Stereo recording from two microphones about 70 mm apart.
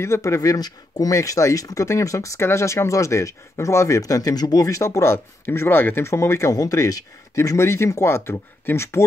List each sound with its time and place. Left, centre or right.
0.0 s speech: left
7.5 s speech: left